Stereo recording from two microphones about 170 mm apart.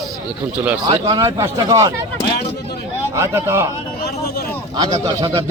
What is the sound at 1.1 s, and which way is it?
Speech, 20° right (ahead or behind).